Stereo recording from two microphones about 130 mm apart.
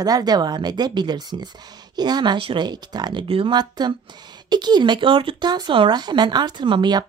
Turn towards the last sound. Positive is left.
turn(degrees=-35)  # may be behind; listen again after turning